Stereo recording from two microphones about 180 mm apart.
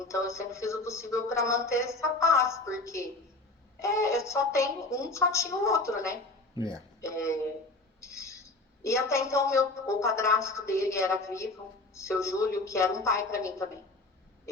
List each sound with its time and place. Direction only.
0.1 s a woman's voice: 15° left (ahead or behind)